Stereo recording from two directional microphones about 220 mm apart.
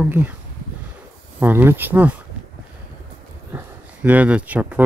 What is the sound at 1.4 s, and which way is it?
Speech, 10° right (ahead or behind).